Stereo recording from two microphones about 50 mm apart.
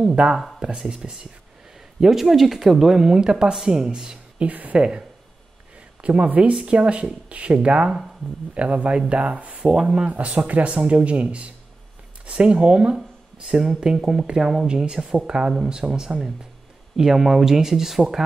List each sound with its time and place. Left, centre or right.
0.0 s speech: centre
2.0 s speech: centre
4.4 s speech: right
4.7 s speech: centre
9.8 s speech: centre
10.1 s speech: right; by 18.2 s centre